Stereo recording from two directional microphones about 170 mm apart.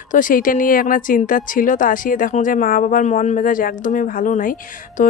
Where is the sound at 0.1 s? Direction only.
55° left (ahead or behind).